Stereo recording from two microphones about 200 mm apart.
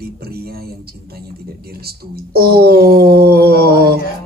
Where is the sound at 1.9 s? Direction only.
50° right (ahead or behind).